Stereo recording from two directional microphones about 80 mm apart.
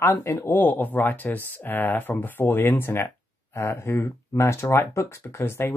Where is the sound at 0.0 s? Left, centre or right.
Left.